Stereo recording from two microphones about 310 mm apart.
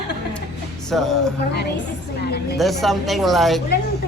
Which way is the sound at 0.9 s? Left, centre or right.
Centre.